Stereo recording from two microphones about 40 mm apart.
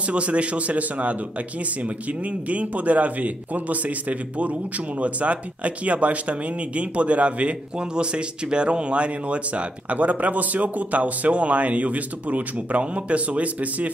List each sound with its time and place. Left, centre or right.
0.1 s speech: right
2.5 s speech: right